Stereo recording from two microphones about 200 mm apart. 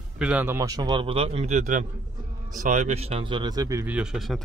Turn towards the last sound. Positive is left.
turn(degrees=0)  # may be behind; listen again after turning